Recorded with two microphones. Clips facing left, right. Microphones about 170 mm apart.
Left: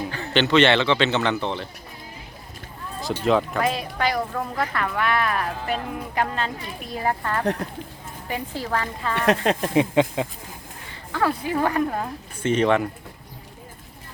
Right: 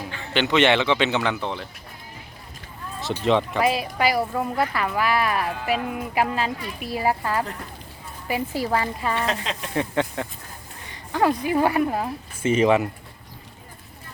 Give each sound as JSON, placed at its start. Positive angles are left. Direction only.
{"t": 0.3, "sound": "speech", "side_deg": -15}
{"t": 3.0, "sound": "speech", "side_deg": 0}
{"t": 9.1, "sound": "speech", "side_deg": 60}
{"t": 9.7, "sound": "speech", "side_deg": 15}
{"t": 11.1, "sound": "speech", "side_deg": -15}